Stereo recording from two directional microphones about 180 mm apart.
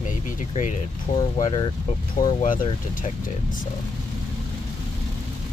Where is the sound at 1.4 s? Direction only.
30° left (ahead or behind).